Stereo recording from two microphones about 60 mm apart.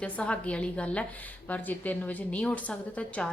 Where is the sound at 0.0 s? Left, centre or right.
Centre.